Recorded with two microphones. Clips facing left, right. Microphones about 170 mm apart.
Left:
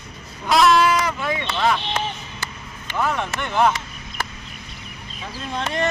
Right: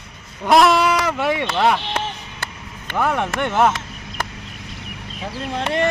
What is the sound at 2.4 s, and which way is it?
Speech, 60° right (ahead or behind).